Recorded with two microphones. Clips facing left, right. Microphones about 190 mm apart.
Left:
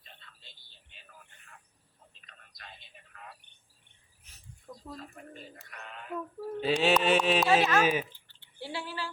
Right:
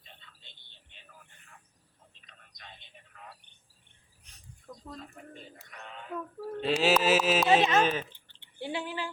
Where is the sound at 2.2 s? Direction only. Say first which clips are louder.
Left 1 dB; 5° left (ahead or behind).